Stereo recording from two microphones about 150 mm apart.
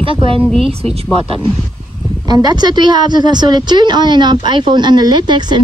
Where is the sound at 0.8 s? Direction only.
40° right (ahead or behind).